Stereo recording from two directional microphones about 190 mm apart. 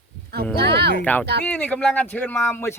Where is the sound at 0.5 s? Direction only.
60° right (ahead or behind).